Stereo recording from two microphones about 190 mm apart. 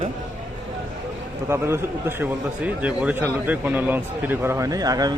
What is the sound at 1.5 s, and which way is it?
A man's voice, 15° right (ahead or behind).